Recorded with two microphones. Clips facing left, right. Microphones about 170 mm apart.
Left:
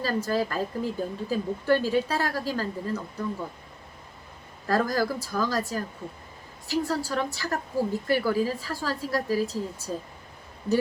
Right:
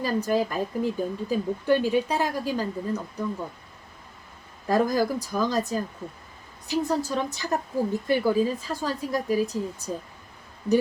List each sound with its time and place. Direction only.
0.0 s a woman's voice: 15° right (ahead or behind)
4.6 s a woman's voice: 20° right (ahead or behind)